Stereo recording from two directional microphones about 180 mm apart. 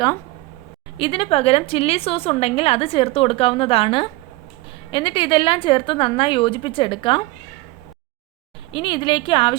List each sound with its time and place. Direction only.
0.9 s a woman's voice: 30° left (ahead or behind)
8.7 s a woman's voice: 25° left (ahead or behind)